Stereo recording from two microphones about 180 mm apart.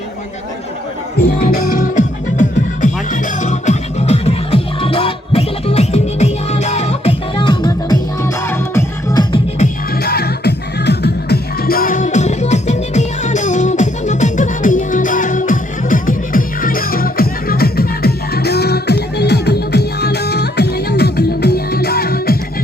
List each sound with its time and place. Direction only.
1.2 s music: 55° left (ahead or behind); by 9.2 s 15° left (ahead or behind)
10.0 s music: 60° left (ahead or behind)